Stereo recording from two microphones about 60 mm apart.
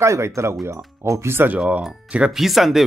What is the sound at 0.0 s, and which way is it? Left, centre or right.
Speech, right.